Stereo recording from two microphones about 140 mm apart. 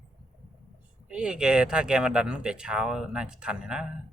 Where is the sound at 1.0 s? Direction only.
5° right (ahead or behind).